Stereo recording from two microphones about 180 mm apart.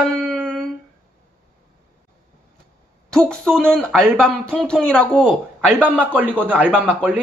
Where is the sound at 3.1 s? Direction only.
5° left (ahead or behind).